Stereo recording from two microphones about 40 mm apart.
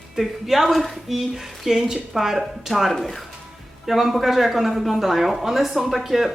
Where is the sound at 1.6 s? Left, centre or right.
Centre.